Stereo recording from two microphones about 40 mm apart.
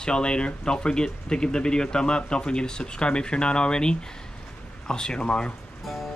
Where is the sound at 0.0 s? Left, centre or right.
Left.